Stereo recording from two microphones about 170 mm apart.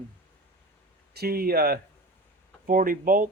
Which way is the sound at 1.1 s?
65° right (ahead or behind).